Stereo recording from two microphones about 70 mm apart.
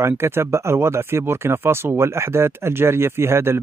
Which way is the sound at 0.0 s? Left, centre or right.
Right.